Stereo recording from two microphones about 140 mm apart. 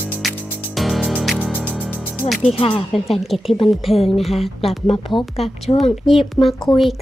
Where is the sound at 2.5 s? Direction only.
40° left (ahead or behind).